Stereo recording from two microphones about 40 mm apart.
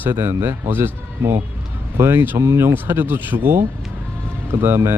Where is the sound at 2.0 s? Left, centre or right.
Right.